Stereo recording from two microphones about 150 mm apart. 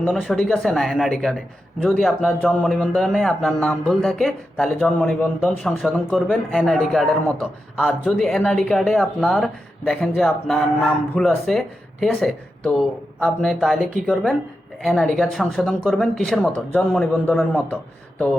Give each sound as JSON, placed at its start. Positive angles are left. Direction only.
{"t": 0.2, "sound": "speech", "side_deg": 5}